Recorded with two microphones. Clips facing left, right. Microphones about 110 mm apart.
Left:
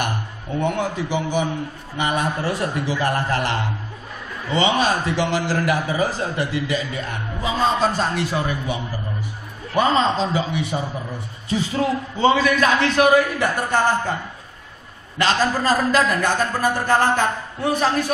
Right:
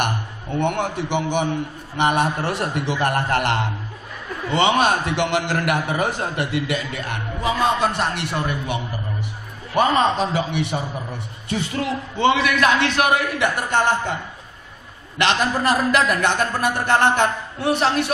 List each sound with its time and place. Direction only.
0.6 s a man's voice: 60° right (ahead or behind)
9.8 s a man's voice: 60° right (ahead or behind)
15.1 s a man's voice: 65° right (ahead or behind)